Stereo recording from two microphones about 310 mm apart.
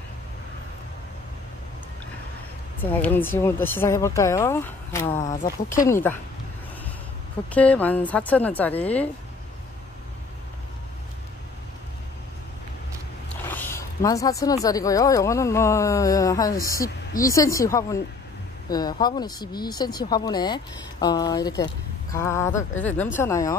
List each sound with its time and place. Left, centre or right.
2.8 s speech: centre
5.2 s speech: left
5.7 s speech: centre
7.5 s a woman's voice: centre
13.3 s speech: centre